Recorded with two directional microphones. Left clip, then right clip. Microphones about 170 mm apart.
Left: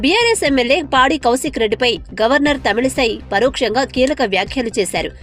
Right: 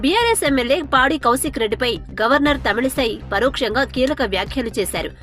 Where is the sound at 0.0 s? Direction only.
25° right (ahead or behind).